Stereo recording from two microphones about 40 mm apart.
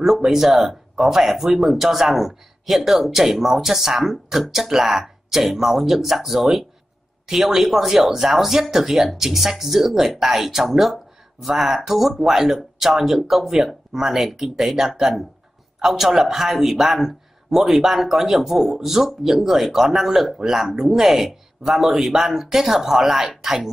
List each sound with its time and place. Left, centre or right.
0.0 s speech: centre